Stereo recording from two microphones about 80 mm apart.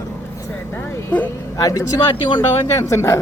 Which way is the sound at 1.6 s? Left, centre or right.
Left.